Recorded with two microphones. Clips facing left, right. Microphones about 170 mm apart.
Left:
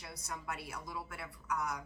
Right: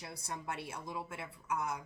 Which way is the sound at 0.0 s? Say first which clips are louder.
Right 2 dB; 30° right (ahead or behind).